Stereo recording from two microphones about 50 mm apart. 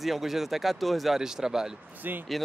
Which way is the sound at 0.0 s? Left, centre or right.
Centre.